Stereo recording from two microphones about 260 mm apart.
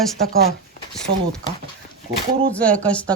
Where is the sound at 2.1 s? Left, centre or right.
Right.